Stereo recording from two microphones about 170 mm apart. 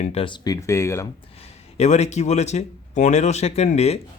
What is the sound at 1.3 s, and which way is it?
Speech, 40° left (ahead or behind).